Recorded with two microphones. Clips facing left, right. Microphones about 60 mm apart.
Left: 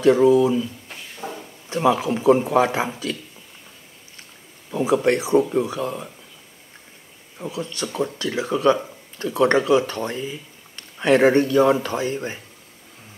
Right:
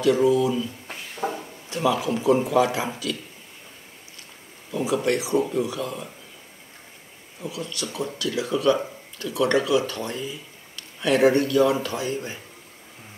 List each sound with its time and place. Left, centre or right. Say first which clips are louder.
0.0 s speech: left 4 dB; left
0.8 s a sound: right 4 dB; centre
1.7 s speech: left 4 dB; left
4.8 s speech: left 5 dB; left
7.3 s speech: left 3 dB; left